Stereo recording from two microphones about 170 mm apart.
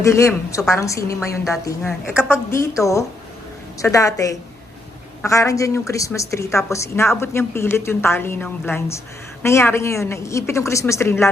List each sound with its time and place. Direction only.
0.0 s a woman's voice: 15° left (ahead or behind)